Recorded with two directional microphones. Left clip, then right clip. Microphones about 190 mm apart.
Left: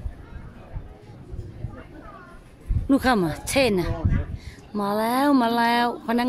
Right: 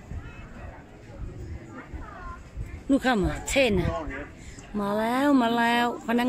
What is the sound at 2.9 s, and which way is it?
Speech, 25° left (ahead or behind).